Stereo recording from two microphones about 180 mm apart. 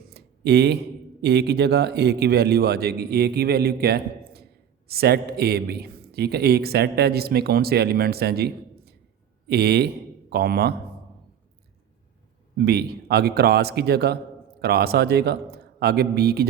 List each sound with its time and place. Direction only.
0.1 s a sound: 65° right (ahead or behind)
1.2 s a man's voice: 65° right (ahead or behind)
12.5 s a man's voice: 60° right (ahead or behind)